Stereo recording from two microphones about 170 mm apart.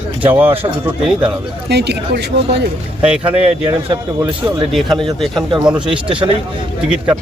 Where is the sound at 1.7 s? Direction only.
80° right.